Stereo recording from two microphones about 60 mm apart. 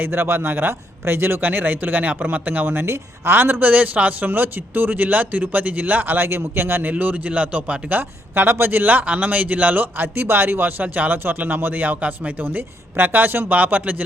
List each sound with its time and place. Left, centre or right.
0.0 s a man's voice: right
6.9 s a man's voice: right